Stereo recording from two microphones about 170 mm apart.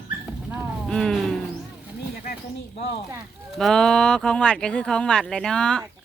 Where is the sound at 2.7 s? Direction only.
35° left (ahead or behind).